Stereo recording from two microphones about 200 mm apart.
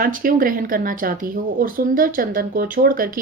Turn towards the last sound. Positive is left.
turn(degrees=-45)  # may be behind; listen again after turning